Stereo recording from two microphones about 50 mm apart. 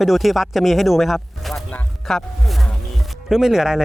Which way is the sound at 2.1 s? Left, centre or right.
Centre.